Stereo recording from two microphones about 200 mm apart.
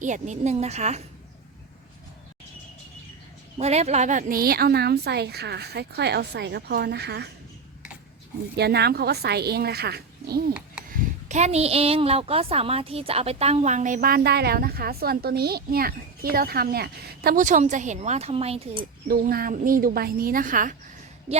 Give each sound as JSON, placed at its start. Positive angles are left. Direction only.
{"t": 0.0, "sound": "a woman's voice", "side_deg": -40}
{"t": 3.6, "sound": "a woman's voice", "side_deg": -35}
{"t": 8.5, "sound": "a woman's voice", "side_deg": -55}
{"t": 10.8, "sound": "a woman's voice", "side_deg": -40}
{"t": 19.0, "sound": "a woman's voice", "side_deg": -45}